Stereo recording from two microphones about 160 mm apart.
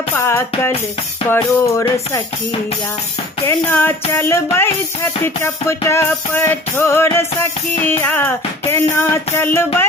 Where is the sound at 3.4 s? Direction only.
15° left (ahead or behind).